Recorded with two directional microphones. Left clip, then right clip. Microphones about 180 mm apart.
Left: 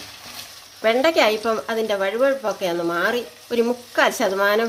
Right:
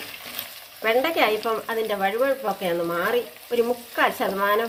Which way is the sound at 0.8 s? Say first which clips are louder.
Left 4 dB; 90° left.